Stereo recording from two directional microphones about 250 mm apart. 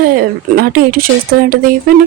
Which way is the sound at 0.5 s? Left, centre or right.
Right.